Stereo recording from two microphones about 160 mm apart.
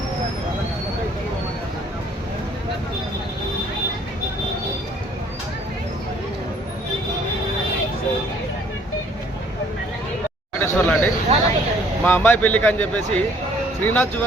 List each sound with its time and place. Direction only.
10.6 s speech: 10° left (ahead or behind)
11.3 s speech: 40° right (ahead or behind)
12.0 s speech: 10° left (ahead or behind)